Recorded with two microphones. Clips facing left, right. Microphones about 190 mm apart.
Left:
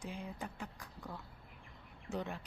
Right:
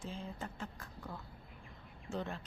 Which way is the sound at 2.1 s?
15° left (ahead or behind).